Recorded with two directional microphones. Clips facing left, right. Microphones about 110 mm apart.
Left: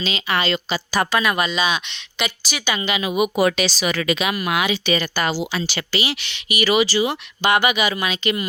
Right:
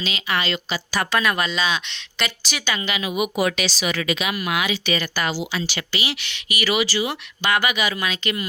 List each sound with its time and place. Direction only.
0.0 s a woman's voice: 30° left (ahead or behind)
1.1 s a woman's voice: 5° left (ahead or behind)
2.7 s speech: 20° left (ahead or behind)
3.0 s speech: 30° left (ahead or behind); by 4.4 s 50° left (ahead or behind)
4.4 s a woman's voice: 35° left (ahead or behind)
4.7 s speech: 25° left (ahead or behind)